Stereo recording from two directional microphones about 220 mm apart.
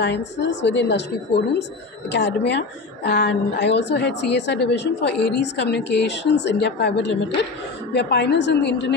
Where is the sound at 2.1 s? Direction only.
50° left (ahead or behind).